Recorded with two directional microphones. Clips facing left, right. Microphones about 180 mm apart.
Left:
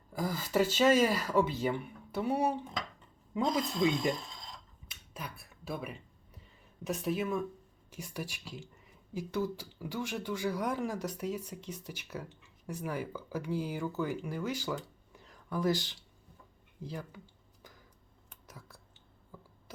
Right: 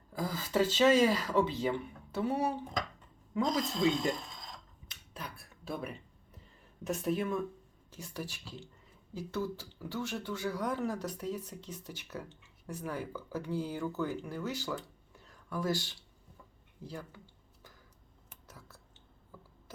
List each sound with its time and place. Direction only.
0.1 s speech: 10° left (ahead or behind)
4.9 s dishes: 10° left (ahead or behind)
6.8 s speech: centre (ahead or behind)
18.4 s a sound: 15° left (ahead or behind)